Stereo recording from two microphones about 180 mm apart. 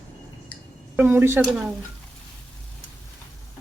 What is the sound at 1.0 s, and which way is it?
Speech, 10° right (ahead or behind).